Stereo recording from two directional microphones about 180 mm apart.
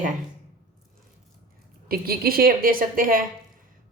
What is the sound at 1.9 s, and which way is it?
Speech, 55° right (ahead or behind).